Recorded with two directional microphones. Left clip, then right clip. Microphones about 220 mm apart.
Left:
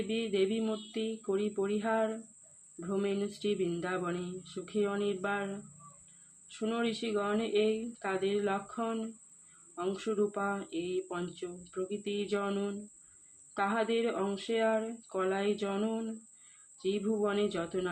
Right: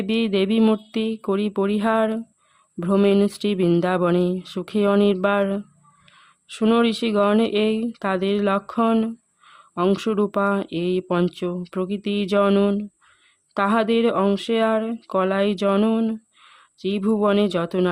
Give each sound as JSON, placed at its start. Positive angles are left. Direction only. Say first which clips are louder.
{"t": 0.1, "sound": "speech", "louder": "right 11 dB", "side_deg": -50}